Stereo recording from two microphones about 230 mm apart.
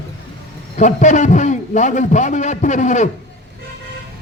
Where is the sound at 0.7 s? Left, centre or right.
Left.